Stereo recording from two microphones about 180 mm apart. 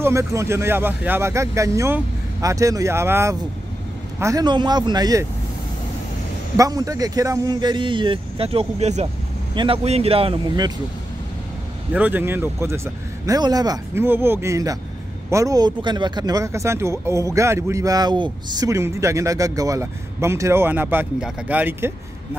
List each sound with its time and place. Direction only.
0.0 s speech: 15° right (ahead or behind)
6.5 s speech: 20° right (ahead or behind)
11.9 s speech: 10° right (ahead or behind)